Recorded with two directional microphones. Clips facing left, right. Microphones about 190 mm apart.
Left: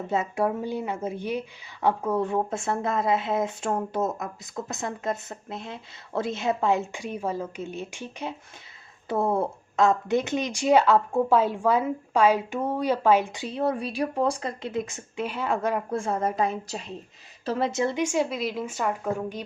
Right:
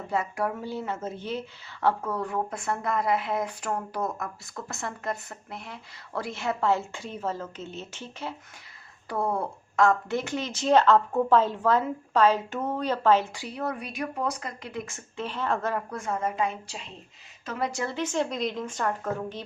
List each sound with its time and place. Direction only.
0.1 s speech: 25° left (ahead or behind)
15.9 s a woman's voice: 30° left (ahead or behind)
17.7 s speech: 20° left (ahead or behind)